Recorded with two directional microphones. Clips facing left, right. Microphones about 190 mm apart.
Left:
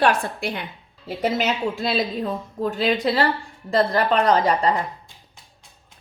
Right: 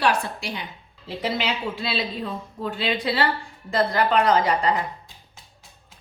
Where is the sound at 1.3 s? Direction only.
45° left (ahead or behind).